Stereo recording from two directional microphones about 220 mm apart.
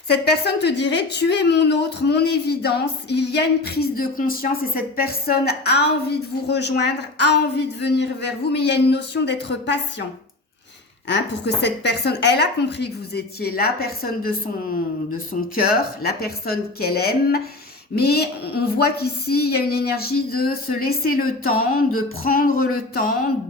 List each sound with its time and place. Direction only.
0.1 s a woman's voice: 50° left (ahead or behind)
11.1 s a woman's voice: 50° left (ahead or behind)
15.5 s a woman's voice: 45° left (ahead or behind)
21.4 s a sound: 75° left (ahead or behind)
22.2 s speech: 40° left (ahead or behind)